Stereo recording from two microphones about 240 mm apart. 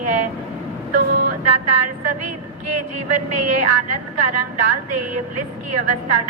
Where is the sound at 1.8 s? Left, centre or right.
Right.